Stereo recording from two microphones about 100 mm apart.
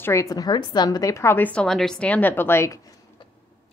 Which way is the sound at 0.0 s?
30° left (ahead or behind).